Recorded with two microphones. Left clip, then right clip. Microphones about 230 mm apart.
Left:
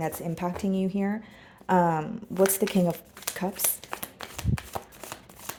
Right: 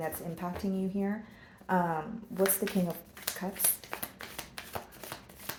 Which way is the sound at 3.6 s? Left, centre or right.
Left.